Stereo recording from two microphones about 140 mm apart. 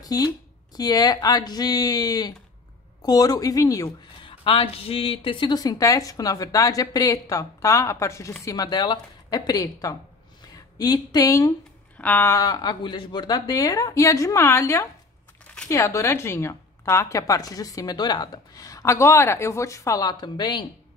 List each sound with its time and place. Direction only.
0.0 s speech: 25° left (ahead or behind)
4.2 s speech: 40° left (ahead or behind)
12.0 s a sound: 10° left (ahead or behind)
12.4 s speech: 30° left (ahead or behind)
15.4 s a sound: 5° left (ahead or behind)
15.7 s speech: 20° left (ahead or behind)